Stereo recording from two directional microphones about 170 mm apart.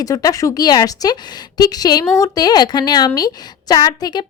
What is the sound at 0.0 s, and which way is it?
A woman's voice, 20° left (ahead or behind).